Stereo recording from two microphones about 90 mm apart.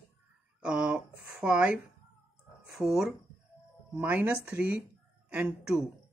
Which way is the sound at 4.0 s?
20° right (ahead or behind).